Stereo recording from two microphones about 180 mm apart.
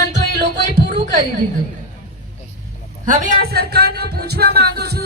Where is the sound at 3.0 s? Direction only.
45° right (ahead or behind).